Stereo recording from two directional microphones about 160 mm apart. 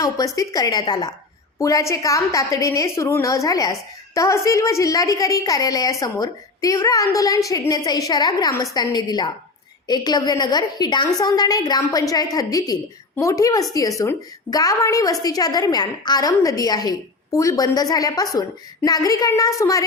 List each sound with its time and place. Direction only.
0.3 s a woman's voice: 20° left (ahead or behind)